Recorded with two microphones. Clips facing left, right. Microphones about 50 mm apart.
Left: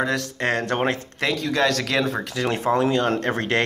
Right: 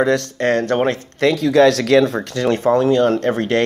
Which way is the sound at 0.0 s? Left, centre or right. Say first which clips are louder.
Right 7 dB; centre.